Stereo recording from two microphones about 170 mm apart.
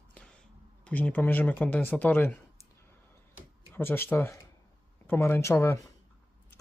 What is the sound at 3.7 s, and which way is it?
Speech, 15° left (ahead or behind).